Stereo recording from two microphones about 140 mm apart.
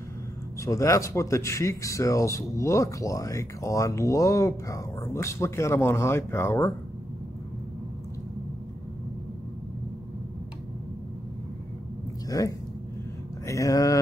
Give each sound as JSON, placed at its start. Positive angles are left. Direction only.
{"t": 0.6, "sound": "speech", "side_deg": 20}
{"t": 12.3, "sound": "speech", "side_deg": 25}